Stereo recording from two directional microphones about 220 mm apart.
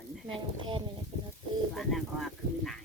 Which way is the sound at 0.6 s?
20° right (ahead or behind).